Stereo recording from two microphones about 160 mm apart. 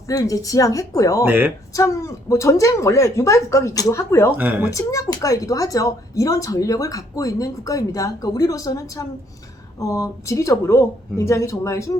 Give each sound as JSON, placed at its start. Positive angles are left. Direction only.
{"t": 0.1, "sound": "a woman's voice", "side_deg": 20}
{"t": 1.2, "sound": "speech", "side_deg": -10}
{"t": 1.7, "sound": "a woman's voice", "side_deg": 20}
{"t": 4.4, "sound": "speech", "side_deg": -10}
{"t": 4.7, "sound": "a woman's voice", "side_deg": 20}